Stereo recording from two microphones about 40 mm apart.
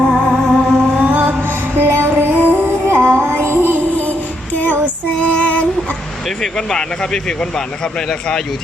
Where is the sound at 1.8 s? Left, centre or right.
Right.